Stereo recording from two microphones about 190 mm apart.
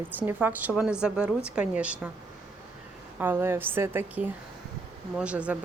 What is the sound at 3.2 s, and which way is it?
Speech, 10° right (ahead or behind).